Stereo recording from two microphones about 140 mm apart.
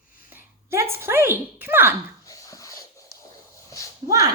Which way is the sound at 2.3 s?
25° left (ahead or behind).